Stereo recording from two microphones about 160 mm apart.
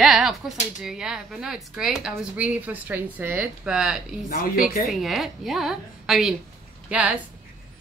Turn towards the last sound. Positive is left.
turn(degrees=-5)  # may be behind; listen again after turning